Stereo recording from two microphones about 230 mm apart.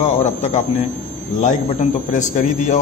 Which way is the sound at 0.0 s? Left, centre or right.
Left.